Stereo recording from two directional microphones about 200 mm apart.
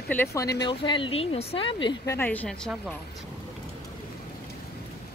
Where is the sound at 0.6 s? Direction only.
25° left (ahead or behind).